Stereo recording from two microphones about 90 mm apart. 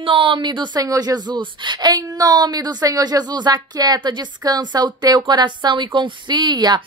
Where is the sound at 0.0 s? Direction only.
80° right.